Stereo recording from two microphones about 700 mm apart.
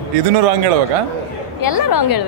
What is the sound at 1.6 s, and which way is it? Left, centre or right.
Speech, left.